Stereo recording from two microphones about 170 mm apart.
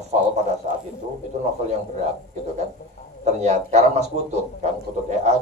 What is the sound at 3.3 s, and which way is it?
Speech, 40° right (ahead or behind).